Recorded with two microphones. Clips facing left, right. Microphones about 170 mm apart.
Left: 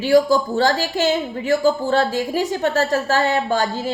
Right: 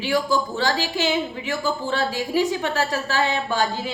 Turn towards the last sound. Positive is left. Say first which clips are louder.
# left 3 dB
turn(degrees=45)  # may be behind; listen again after turning